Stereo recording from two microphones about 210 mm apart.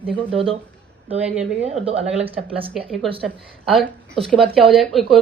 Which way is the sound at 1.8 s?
30° right (ahead or behind).